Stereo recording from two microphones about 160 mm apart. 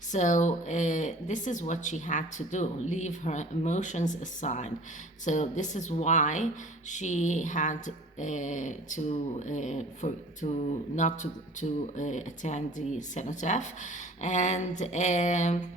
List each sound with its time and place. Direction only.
0.1 s speech: 50° left (ahead or behind)